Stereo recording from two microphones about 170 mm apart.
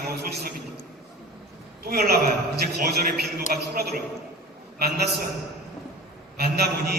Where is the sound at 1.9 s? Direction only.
65° right (ahead or behind).